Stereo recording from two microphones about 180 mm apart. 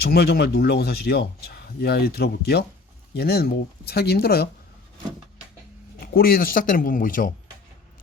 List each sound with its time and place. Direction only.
0.0 s speech: 60° left (ahead or behind)
6.0 s speech: 55° left (ahead or behind)